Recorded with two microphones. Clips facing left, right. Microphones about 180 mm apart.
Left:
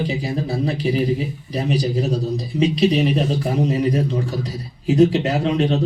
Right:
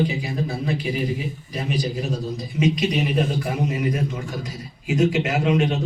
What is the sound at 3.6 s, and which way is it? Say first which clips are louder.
A man's voice: left 5 dB; 35° left (ahead or behind).